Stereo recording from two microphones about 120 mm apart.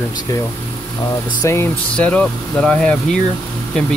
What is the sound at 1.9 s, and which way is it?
Speech, 10° left (ahead or behind).